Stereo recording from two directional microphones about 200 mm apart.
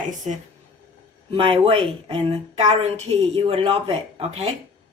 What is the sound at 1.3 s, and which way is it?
A woman's voice, 25° right (ahead or behind).